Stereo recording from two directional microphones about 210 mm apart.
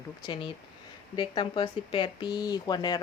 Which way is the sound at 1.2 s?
20° left (ahead or behind).